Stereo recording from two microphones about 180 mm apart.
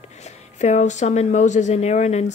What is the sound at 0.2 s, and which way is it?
Speech, 40° left (ahead or behind).